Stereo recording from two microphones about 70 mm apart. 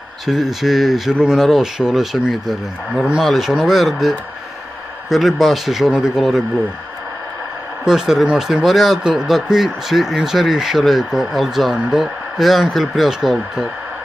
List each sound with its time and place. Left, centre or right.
0.3 s speech: centre
5.1 s speech: centre
7.8 s speech: centre